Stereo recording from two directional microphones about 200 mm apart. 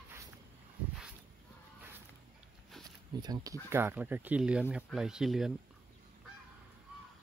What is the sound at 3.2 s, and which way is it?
Speech, 20° right (ahead or behind).